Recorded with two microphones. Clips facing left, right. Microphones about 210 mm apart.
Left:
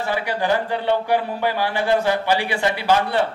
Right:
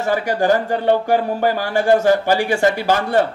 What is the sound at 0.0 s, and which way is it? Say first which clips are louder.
A man's voice: right 5 dB; 45° right (ahead or behind).